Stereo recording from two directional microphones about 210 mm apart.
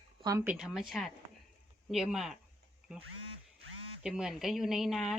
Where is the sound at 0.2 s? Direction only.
15° right (ahead or behind).